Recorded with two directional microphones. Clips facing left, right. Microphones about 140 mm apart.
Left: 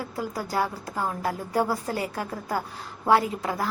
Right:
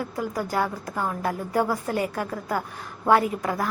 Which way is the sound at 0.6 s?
15° left (ahead or behind).